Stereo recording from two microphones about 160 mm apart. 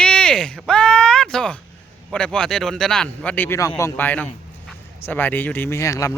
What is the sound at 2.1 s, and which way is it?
Speech, 5° left (ahead or behind).